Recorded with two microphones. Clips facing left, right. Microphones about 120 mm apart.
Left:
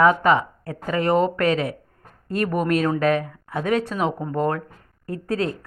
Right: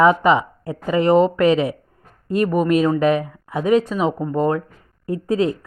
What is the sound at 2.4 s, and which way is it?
Speech, centre (ahead or behind).